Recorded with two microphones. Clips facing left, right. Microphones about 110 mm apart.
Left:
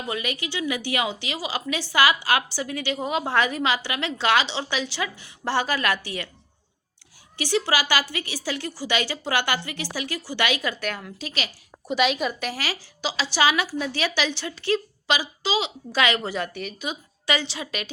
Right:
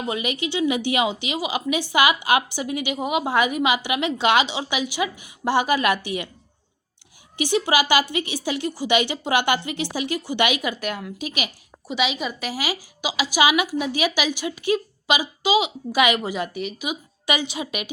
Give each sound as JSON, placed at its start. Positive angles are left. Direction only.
{"t": 0.1, "sound": "a woman's voice", "side_deg": -20}
{"t": 7.3, "sound": "a woman's voice", "side_deg": -20}
{"t": 11.9, "sound": "a woman's voice", "side_deg": 0}